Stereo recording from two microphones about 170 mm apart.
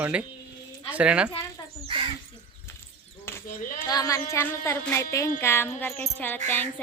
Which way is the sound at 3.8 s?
20° left (ahead or behind).